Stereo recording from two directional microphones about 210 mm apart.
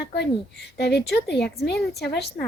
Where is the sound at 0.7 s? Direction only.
50° left (ahead or behind).